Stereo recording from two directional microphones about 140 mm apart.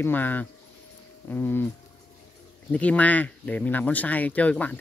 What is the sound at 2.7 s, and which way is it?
Speech, 10° left (ahead or behind).